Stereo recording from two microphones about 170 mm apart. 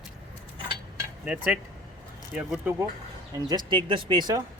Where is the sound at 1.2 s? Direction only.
5° right (ahead or behind).